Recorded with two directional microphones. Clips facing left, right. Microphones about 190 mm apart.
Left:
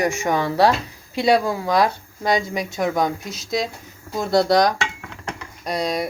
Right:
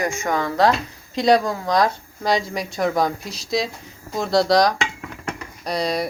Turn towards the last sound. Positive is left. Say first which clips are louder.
# even
turn(degrees=0)  # may be behind; listen again after turning